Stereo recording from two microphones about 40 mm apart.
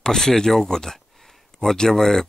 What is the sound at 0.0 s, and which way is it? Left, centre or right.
Speech, centre.